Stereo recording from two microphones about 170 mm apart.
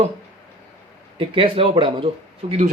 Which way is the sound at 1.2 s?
30° right (ahead or behind).